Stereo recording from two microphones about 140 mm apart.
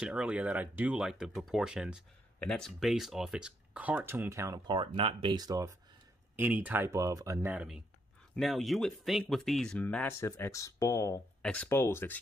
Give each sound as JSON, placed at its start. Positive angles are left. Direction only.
{"t": 0.0, "sound": "speech", "side_deg": -5}
{"t": 4.6, "sound": "speech", "side_deg": -40}
{"t": 6.3, "sound": "speech", "side_deg": -10}
{"t": 7.5, "sound": "speech", "side_deg": -5}
{"t": 11.4, "sound": "speech", "side_deg": 10}